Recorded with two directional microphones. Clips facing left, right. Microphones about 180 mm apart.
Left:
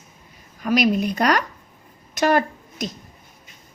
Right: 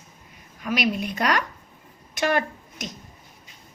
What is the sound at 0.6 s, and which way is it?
Speech, 40° left (ahead or behind).